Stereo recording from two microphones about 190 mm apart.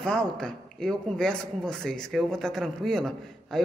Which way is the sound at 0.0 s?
5° left (ahead or behind).